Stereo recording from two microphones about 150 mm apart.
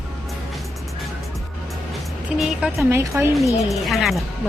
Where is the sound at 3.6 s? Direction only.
Centre (ahead or behind).